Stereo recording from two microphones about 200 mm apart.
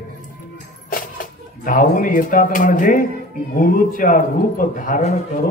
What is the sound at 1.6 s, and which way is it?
A man's voice, 45° left (ahead or behind).